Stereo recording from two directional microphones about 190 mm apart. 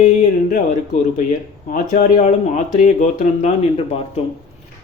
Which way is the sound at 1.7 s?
40° left (ahead or behind).